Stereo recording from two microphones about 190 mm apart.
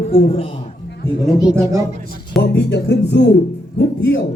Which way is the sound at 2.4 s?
65° left (ahead or behind).